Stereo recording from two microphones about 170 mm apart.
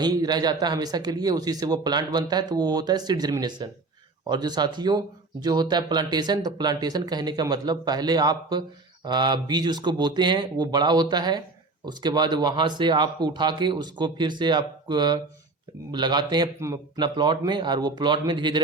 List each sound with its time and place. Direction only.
0.0 s speech: 25° right (ahead or behind)